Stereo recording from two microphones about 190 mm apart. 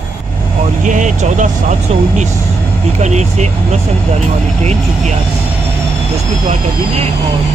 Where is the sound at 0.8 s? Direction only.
40° right (ahead or behind).